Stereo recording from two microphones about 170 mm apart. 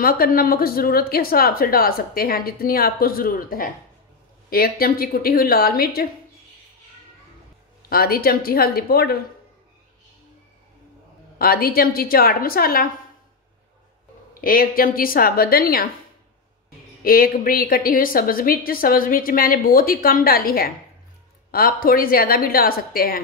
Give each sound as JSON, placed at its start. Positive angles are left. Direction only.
{"t": 0.0, "sound": "a woman's voice", "side_deg": 60}
{"t": 7.9, "sound": "a woman's voice", "side_deg": 60}
{"t": 11.3, "sound": "a woman's voice", "side_deg": 60}
{"t": 14.4, "sound": "a woman's voice", "side_deg": 60}
{"t": 17.0, "sound": "a woman's voice", "side_deg": 60}